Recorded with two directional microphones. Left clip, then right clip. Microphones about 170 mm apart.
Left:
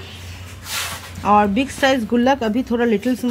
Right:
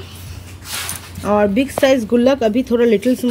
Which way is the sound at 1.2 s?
10° right (ahead or behind).